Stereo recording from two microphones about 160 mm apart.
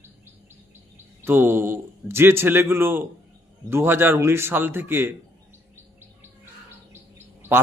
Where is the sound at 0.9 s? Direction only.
15° right (ahead or behind).